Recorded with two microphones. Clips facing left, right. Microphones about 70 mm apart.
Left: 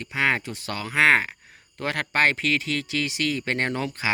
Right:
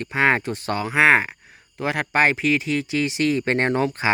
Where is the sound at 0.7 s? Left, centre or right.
Centre.